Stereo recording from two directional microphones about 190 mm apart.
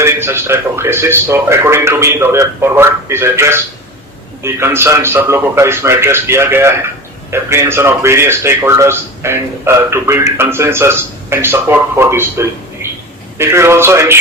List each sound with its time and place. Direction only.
0.0 s a man's voice: 15° right (ahead or behind)